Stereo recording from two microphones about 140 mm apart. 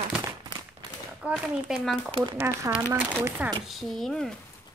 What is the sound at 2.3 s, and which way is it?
Speech, 20° right (ahead or behind).